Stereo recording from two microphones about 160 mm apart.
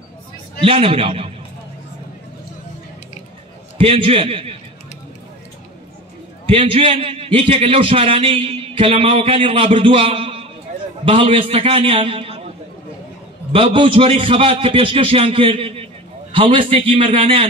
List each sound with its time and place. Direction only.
0.7 s a man's voice: 35° right (ahead or behind)
3.7 s a man's voice: 35° right (ahead or behind)
6.4 s a man's voice: 35° right (ahead or behind)
13.5 s a man's voice: 35° right (ahead or behind)